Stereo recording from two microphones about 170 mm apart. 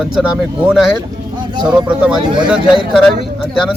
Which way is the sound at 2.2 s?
25° right (ahead or behind).